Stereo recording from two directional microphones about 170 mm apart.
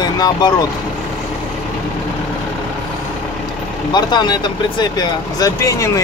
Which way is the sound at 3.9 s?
25° left (ahead or behind).